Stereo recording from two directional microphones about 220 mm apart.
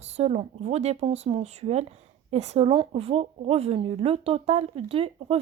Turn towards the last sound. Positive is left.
turn(degrees=-25)  # may be behind; listen again after turning